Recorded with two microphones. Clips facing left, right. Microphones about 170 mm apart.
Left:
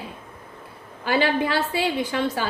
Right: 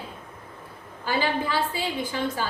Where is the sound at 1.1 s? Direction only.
70° left (ahead or behind).